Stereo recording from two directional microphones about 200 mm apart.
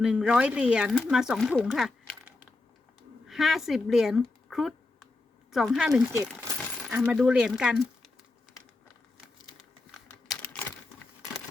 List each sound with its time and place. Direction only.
0.0 s speech: 5° right (ahead or behind)
4.4 s a sound: centre (ahead or behind)
5.5 s speech: centre (ahead or behind)
6.1 s speech: 15° right (ahead or behind)
10.2 s computer keyboard: 5° left (ahead or behind)